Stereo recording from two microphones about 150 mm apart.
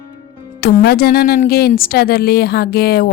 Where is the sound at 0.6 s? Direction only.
90° left.